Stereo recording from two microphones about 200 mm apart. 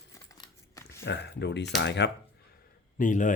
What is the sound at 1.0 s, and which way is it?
Speech, 60° left (ahead or behind).